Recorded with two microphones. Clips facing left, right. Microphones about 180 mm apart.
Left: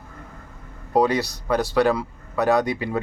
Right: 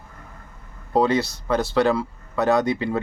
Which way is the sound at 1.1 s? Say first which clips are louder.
Right 1 dB; 15° left (ahead or behind).